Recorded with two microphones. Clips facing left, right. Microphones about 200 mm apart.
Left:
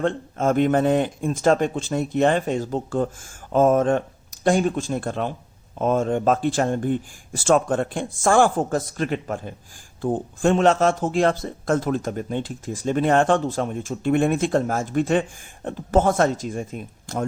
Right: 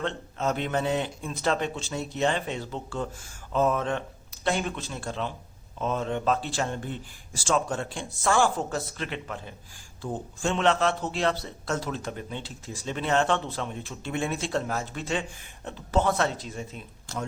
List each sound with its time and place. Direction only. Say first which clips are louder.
0.0 s speech: left 7 dB; 50° left (ahead or behind)